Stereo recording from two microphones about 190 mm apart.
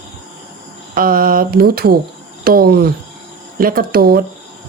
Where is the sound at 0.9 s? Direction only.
50° right (ahead or behind).